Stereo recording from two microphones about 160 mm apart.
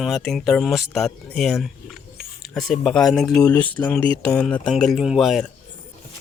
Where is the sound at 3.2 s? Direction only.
25° left (ahead or behind).